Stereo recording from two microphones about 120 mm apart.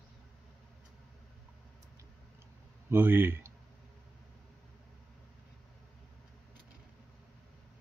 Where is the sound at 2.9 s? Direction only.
15° right (ahead or behind).